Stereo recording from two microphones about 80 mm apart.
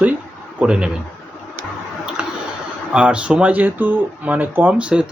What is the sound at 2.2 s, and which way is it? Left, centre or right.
Tick-tock, centre.